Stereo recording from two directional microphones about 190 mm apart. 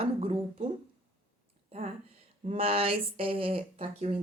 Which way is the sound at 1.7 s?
30° right (ahead or behind).